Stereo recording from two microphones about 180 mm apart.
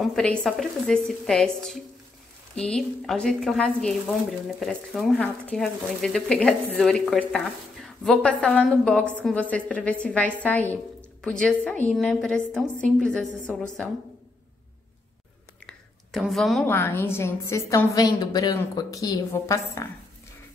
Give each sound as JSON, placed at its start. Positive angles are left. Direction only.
{"t": 0.0, "sound": "speech", "side_deg": 5}
{"t": 15.6, "sound": "whispering", "side_deg": 0}
{"t": 16.6, "sound": "a woman's voice", "side_deg": 15}